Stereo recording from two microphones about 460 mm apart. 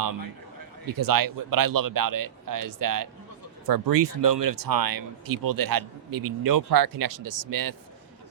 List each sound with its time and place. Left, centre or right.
0.9 s speech: right